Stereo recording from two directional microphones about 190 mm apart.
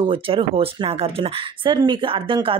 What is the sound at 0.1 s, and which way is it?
Speech, 30° right (ahead or behind).